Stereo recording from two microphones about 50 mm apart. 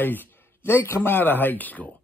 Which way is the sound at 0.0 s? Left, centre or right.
Left.